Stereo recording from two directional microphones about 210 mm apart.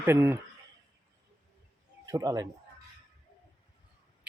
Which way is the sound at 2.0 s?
15° right (ahead or behind).